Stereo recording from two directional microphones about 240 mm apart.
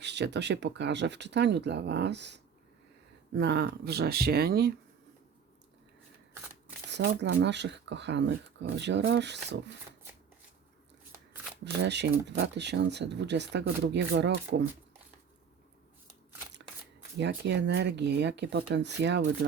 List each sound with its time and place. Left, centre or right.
0.0 s speech: right
6.9 s speech: right
11.6 s speech: right
17.2 s speech: right